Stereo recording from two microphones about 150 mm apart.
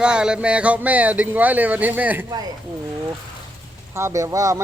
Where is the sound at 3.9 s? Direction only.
20° right (ahead or behind).